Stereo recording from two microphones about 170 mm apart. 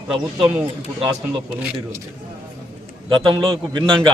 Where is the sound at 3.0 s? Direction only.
30° right (ahead or behind).